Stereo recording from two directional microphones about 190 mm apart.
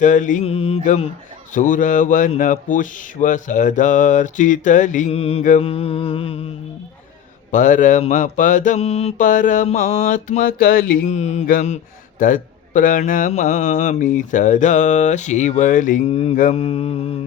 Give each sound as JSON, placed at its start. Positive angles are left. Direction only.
{"t": 0.0, "sound": "speech", "side_deg": 40}
{"t": 7.5, "sound": "speech", "side_deg": 40}